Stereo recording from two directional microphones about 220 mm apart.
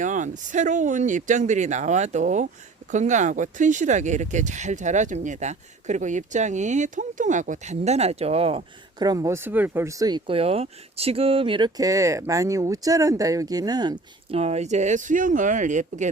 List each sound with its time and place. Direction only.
0.0 s speech: 35° right (ahead or behind)